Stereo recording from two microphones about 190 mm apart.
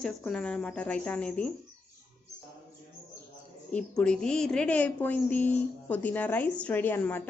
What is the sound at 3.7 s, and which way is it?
A woman's voice, 5° left (ahead or behind).